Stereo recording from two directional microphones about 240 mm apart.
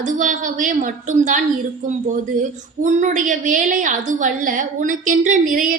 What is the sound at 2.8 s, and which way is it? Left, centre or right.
A woman's voice, right.